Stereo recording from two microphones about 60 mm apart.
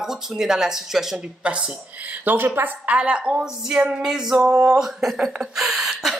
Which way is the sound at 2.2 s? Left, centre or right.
Right.